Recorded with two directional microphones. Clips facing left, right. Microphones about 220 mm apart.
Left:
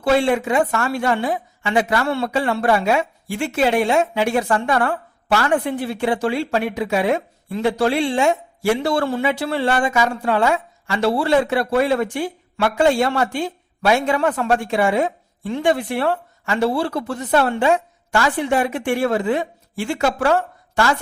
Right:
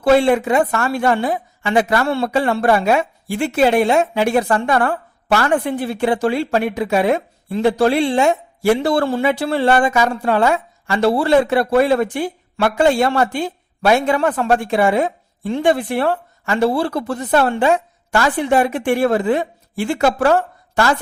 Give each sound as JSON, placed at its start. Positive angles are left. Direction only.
{"t": 0.0, "sound": "a woman's voice", "side_deg": -45}
{"t": 8.7, "sound": "speech", "side_deg": -50}
{"t": 9.3, "sound": "a woman's voice", "side_deg": -35}